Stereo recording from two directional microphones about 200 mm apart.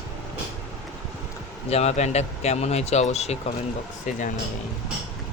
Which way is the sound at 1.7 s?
30° left (ahead or behind).